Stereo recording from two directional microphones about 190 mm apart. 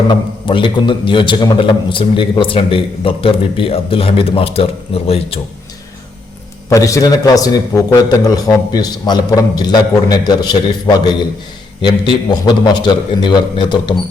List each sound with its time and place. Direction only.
0.1 s a man's voice: 25° left (ahead or behind)
6.7 s a man's voice: 15° left (ahead or behind)